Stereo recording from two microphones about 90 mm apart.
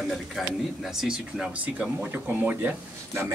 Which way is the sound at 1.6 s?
15° right (ahead or behind).